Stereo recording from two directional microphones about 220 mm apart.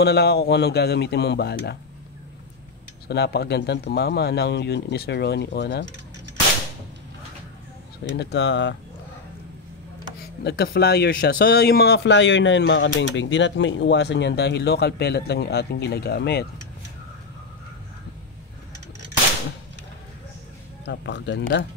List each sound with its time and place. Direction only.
0.0 s speech: 50° left (ahead or behind)
3.1 s speech: 50° left (ahead or behind)
8.2 s speech: 50° left (ahead or behind)
10.4 s speech: 50° left (ahead or behind)
20.8 s speech: 55° left (ahead or behind)